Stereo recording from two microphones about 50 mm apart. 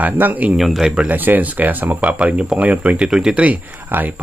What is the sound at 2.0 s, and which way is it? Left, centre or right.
Speech, right.